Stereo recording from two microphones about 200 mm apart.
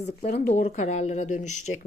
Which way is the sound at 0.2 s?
35° left (ahead or behind).